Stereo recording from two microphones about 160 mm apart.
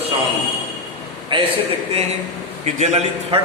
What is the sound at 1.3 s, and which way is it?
Speech, 30° right (ahead or behind).